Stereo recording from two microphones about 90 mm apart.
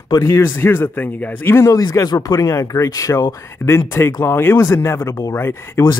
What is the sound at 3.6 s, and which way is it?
Speech, 30° left (ahead or behind).